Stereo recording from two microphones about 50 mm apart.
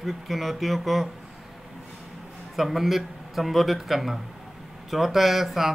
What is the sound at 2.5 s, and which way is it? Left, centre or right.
Speech, centre.